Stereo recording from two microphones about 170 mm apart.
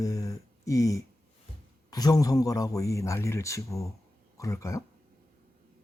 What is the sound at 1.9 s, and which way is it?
Speech, 20° left (ahead or behind).